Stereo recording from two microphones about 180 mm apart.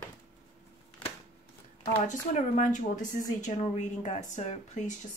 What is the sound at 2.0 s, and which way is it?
Speech, 45° left (ahead or behind).